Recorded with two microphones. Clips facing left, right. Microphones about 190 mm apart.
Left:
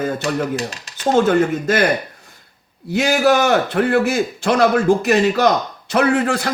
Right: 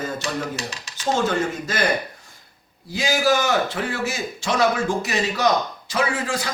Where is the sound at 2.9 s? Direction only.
65° left (ahead or behind).